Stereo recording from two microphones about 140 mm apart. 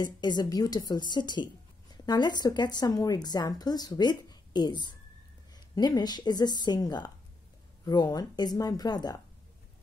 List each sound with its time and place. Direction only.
0.0 s a woman's voice: 30° left (ahead or behind)